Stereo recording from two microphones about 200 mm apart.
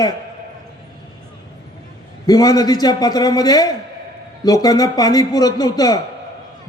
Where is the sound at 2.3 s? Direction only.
20° left (ahead or behind).